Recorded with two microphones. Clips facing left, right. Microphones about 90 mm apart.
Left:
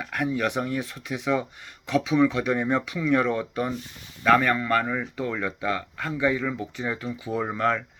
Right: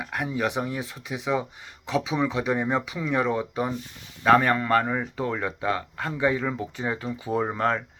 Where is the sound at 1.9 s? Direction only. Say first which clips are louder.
Left 4 dB; 25° right (ahead or behind).